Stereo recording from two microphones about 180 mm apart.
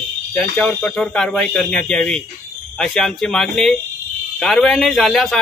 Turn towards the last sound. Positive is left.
turn(degrees=0)  # may be behind; listen again after turning